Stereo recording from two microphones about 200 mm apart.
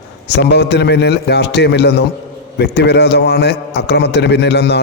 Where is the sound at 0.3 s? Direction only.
55° left (ahead or behind).